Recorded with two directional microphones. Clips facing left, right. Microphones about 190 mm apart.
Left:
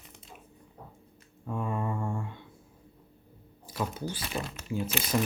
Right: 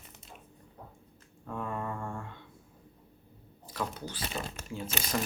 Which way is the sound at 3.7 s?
10° left (ahead or behind).